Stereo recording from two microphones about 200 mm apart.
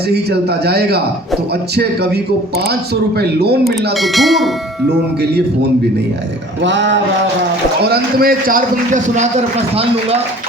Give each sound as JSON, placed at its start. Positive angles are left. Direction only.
{"t": 0.1, "sound": "a man's voice", "side_deg": -55}
{"t": 1.7, "sound": "a sound", "side_deg": -55}
{"t": 2.6, "sound": "a man's voice", "side_deg": -55}
{"t": 3.9, "sound": "speech", "side_deg": 0}
{"t": 6.6, "sound": "a sound", "side_deg": -65}
{"t": 7.9, "sound": "a man's voice", "side_deg": -45}